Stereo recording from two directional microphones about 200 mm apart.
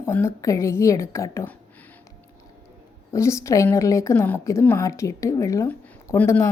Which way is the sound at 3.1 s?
15° left (ahead or behind).